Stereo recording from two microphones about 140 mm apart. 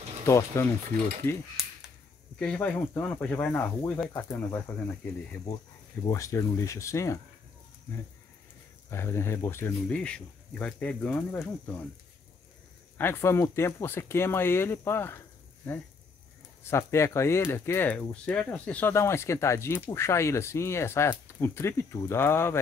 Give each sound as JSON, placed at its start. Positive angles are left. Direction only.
{"t": 0.3, "sound": "speech", "side_deg": 20}
{"t": 6.0, "sound": "speech", "side_deg": 25}
{"t": 8.9, "sound": "speech", "side_deg": 20}
{"t": 9.8, "sound": "speech", "side_deg": 10}
{"t": 12.9, "sound": "speech", "side_deg": 15}